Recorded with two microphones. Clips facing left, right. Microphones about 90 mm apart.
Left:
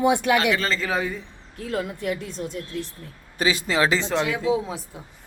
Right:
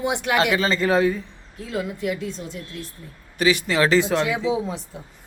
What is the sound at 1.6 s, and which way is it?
Speech, 50° left (ahead or behind).